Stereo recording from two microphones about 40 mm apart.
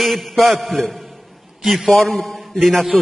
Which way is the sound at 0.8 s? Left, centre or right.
Centre.